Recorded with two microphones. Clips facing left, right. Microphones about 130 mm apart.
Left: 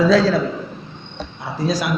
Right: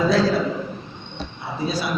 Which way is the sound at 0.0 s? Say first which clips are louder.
Left 4 dB; 70° left (ahead or behind).